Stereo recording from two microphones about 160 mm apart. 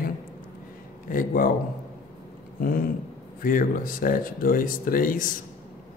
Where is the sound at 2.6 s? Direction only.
60° left (ahead or behind).